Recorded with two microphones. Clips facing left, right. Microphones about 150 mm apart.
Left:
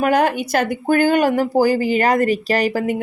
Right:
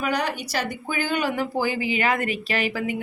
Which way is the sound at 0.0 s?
50° left (ahead or behind).